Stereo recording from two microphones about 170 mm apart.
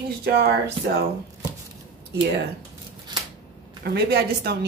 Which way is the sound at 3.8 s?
70° right (ahead or behind).